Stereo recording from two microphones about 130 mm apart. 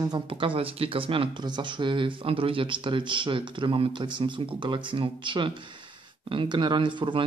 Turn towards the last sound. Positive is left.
turn(degrees=-40)  # may be behind; listen again after turning